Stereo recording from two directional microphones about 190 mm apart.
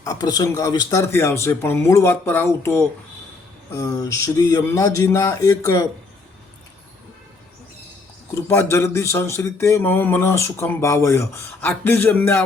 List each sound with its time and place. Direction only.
0.0 s speech: 20° left (ahead or behind)
8.4 s speech: 15° left (ahead or behind)